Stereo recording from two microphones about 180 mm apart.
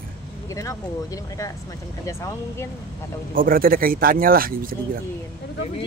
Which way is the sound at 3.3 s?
50° right (ahead or behind).